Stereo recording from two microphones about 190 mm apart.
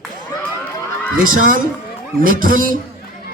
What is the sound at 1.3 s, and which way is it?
A man's voice, 45° right (ahead or behind).